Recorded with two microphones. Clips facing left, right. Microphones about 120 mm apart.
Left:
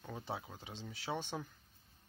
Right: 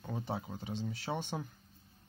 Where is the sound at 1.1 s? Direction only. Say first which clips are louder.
Right 2 dB; 15° right (ahead or behind).